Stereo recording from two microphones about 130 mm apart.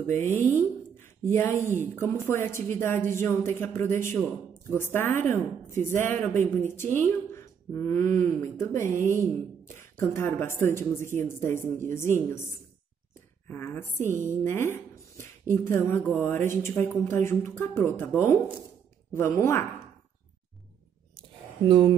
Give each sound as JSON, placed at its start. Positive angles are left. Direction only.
{"t": 0.0, "sound": "a woman's voice", "side_deg": 15}
{"t": 19.1, "sound": "speech", "side_deg": 20}
{"t": 21.2, "sound": "a sound", "side_deg": -40}